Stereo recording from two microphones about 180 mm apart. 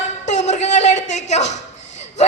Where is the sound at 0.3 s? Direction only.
40° left (ahead or behind).